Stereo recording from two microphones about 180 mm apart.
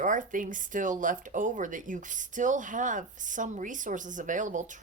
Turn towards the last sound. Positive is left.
turn(degrees=-45)  # may be behind; listen again after turning